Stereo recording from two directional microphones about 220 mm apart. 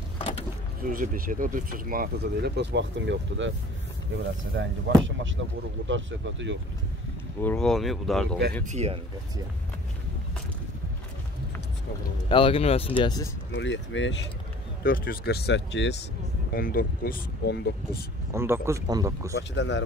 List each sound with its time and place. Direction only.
0.8 s speech: 40° right (ahead or behind); by 3.5 s 55° right (ahead or behind)
4.6 s speech: 55° right (ahead or behind)
7.3 s speech: 5° left (ahead or behind)
8.6 s a man's voice: 30° right (ahead or behind)
12.3 s speech: 25° left (ahead or behind)
13.5 s speech: 55° left (ahead or behind)
14.8 s speech: 40° left (ahead or behind)
16.5 s speech: 40° left (ahead or behind)
18.3 s speech: 10° right (ahead or behind)
19.3 s speech: 55° left (ahead or behind)